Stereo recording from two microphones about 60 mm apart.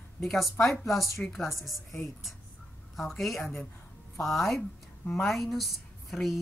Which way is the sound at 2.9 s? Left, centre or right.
Centre.